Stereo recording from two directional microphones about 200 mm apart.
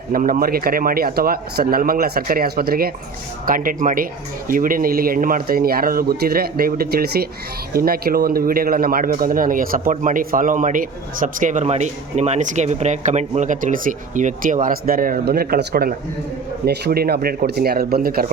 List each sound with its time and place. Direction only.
0.1 s a man's voice: 45° right (ahead or behind)